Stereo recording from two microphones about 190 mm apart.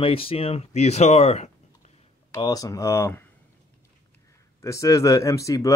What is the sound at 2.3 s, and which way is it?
Speech, 20° left (ahead or behind).